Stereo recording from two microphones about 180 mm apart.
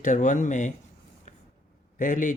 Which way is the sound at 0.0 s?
45° left (ahead or behind).